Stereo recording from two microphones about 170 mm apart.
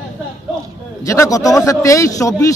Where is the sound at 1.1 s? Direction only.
20° left (ahead or behind).